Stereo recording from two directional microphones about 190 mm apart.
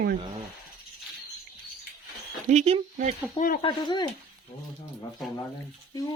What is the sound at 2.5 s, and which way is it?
Speech, 35° right (ahead or behind).